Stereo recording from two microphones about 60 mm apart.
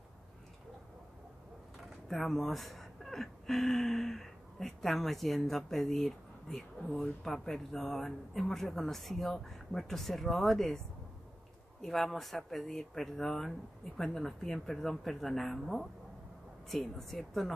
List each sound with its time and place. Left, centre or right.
2.0 s speech: centre
11.8 s speech: centre